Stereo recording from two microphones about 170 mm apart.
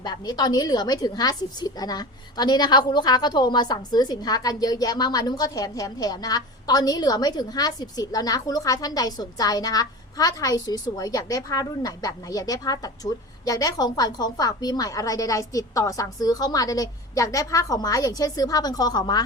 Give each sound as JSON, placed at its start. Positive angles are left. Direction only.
{"t": 0.0, "sound": "a woman's voice", "side_deg": 25}